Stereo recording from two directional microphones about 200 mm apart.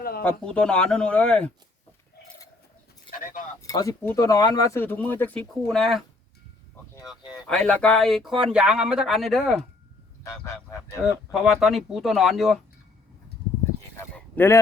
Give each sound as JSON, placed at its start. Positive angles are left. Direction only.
{"t": 0.2, "sound": "speech", "side_deg": 5}
{"t": 3.1, "sound": "keys jangling", "side_deg": 45}
{"t": 3.6, "sound": "speech", "side_deg": 15}
{"t": 7.4, "sound": "speech", "side_deg": 5}
{"t": 10.4, "sound": "fowl", "side_deg": 15}
{"t": 11.3, "sound": "speech", "side_deg": 0}
{"t": 13.9, "sound": "a sound", "side_deg": 10}